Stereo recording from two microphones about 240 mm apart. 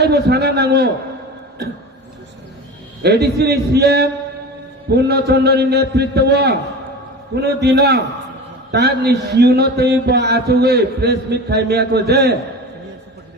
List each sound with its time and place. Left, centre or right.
0.0 s a man's voice: right
3.0 s a man's voice: right